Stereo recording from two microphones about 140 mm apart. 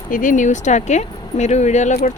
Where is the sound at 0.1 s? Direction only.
70° left (ahead or behind).